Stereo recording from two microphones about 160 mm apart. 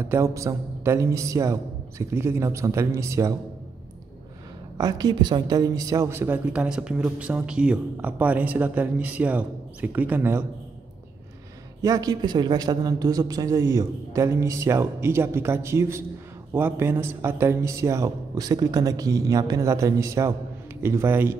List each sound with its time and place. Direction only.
0.0 s a man's voice: 15° right (ahead or behind)
4.7 s a woman's voice: 25° right (ahead or behind)
11.8 s a man's voice: 25° right (ahead or behind)